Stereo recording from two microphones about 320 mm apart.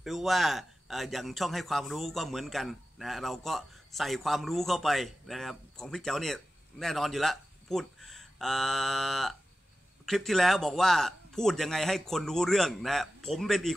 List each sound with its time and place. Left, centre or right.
0.0 s a man's voice: centre